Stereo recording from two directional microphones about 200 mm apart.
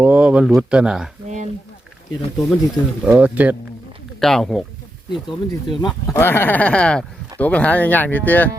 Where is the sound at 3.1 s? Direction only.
5° right (ahead or behind).